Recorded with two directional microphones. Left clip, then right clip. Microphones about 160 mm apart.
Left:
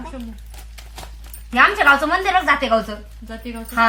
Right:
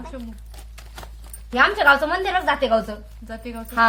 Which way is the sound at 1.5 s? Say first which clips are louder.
Left 2 dB; 55° right (ahead or behind).